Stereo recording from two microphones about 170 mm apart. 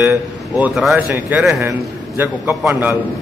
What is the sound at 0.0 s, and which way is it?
A man's voice, 5° right (ahead or behind).